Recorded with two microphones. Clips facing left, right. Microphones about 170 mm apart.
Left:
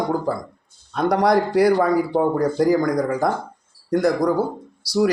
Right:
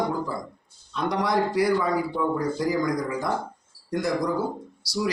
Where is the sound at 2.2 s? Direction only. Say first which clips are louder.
Left 7 dB; 55° left (ahead or behind).